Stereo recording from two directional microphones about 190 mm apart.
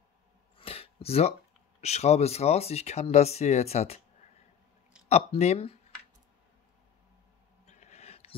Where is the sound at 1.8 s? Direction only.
35° left (ahead or behind).